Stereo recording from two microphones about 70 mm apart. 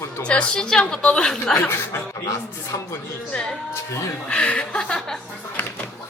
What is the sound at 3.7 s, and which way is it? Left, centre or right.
Speech, left.